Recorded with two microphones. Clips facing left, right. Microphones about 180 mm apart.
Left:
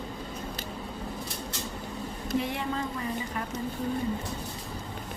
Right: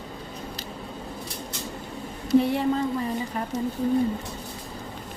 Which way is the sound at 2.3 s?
35° right (ahead or behind).